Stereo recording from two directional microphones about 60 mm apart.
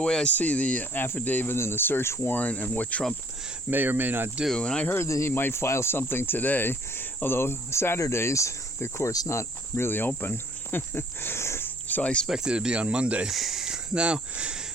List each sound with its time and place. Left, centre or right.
0.0 s speech: centre
0.3 s speech: left
0.9 s speech: left
2.3 s speech: left
3.7 s speech: right
4.5 s speech: centre
5.0 s speech: left
5.3 s speech: left
9.3 s cricket: left
11.9 s cricket: left
12.3 s speech: centre
13.2 s speech: centre